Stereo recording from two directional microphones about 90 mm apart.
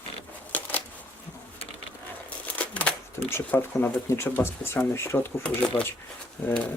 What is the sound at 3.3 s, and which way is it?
Speech, 25° left (ahead or behind).